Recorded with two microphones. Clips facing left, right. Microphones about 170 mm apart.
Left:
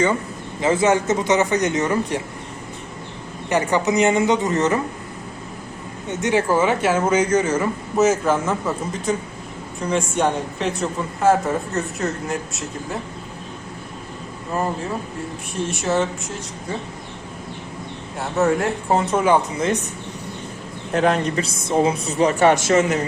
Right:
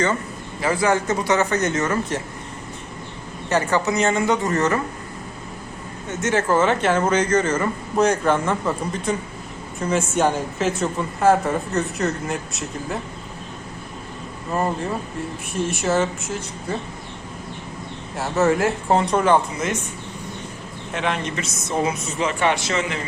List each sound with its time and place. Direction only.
0.6 s a man's voice: 25° left (ahead or behind)
3.5 s speech: 15° left (ahead or behind)
6.1 s a man's voice: 15° left (ahead or behind); by 13.0 s centre (ahead or behind)
14.5 s speech: centre (ahead or behind)
15.7 s speech: centre (ahead or behind)
18.2 s speech: centre (ahead or behind)
19.5 s a woman's voice: 30° left (ahead or behind)
20.9 s a woman's voice: 40° left (ahead or behind)